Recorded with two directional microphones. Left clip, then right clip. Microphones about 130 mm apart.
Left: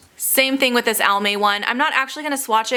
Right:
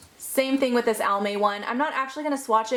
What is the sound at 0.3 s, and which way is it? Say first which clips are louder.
A woman's voice: left 6 dB; 35° left (ahead or behind).